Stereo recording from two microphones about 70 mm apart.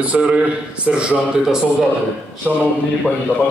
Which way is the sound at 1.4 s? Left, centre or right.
Centre.